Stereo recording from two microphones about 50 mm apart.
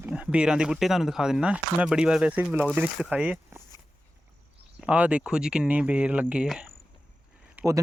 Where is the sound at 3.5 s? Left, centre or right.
Right.